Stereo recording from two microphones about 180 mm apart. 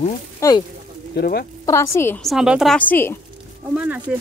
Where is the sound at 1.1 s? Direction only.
60° left (ahead or behind).